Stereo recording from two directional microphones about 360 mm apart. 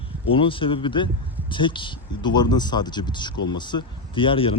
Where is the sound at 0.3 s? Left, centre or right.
Centre.